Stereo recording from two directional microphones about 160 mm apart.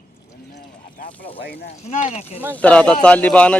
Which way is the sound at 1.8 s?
45° left (ahead or behind).